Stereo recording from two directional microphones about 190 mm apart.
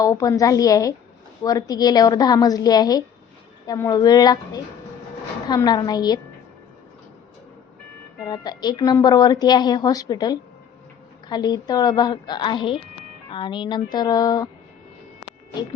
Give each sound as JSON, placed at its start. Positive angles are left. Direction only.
{"t": 0.0, "sound": "a woman's voice", "side_deg": 15}
{"t": 8.2, "sound": "a woman's voice", "side_deg": 20}